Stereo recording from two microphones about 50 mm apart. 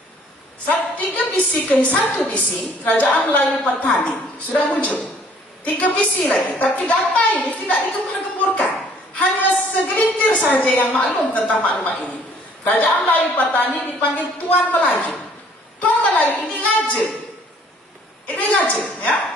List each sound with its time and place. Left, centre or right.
0.7 s a woman's voice: left
8.4 s a sound: left
10.5 s a woman's voice: left
11.4 s a woman's voice: left
15.8 s a sound: left
18.2 s a woman's voice: left